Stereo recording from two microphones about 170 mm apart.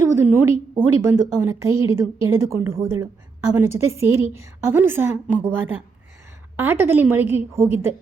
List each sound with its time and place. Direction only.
0.0 s a woman's voice: 15° right (ahead or behind)